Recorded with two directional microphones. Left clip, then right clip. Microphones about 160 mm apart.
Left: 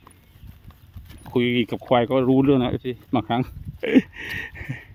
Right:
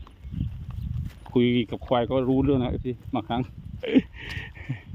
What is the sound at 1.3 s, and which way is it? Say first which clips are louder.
Speech: left 2 dB; 55° left (ahead or behind).